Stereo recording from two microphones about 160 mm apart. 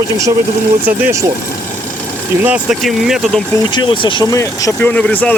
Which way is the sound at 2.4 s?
10° right (ahead or behind).